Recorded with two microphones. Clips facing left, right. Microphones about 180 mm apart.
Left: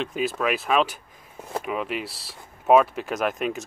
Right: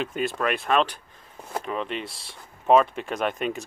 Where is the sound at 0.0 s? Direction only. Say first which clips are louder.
Left 1 dB; centre (ahead or behind).